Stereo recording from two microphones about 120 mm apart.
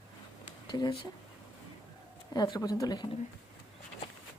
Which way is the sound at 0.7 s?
35° left (ahead or behind).